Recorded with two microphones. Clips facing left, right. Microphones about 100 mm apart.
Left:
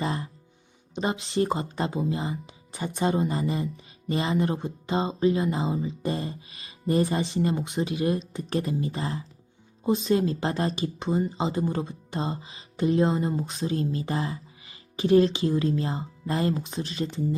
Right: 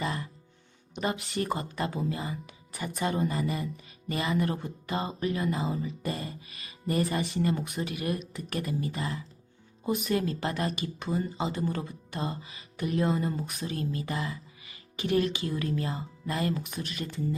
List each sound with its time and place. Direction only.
0.0 s music: 30° left (ahead or behind)
0.9 s speech: 25° left (ahead or behind)